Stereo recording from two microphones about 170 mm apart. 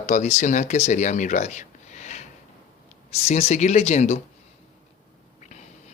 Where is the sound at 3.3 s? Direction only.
40° left (ahead or behind).